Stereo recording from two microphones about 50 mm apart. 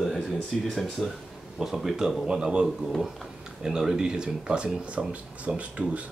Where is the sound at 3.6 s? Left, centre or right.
Centre.